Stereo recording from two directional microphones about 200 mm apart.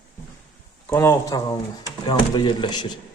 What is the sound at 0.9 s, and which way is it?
A man's voice, 15° left (ahead or behind).